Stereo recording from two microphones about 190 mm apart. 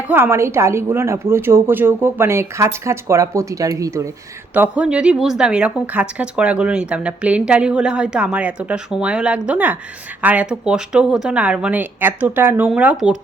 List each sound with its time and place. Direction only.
0.1 s a woman's voice: 15° right (ahead or behind)